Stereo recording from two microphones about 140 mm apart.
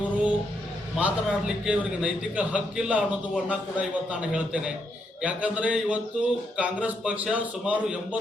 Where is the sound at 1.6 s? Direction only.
5° right (ahead or behind).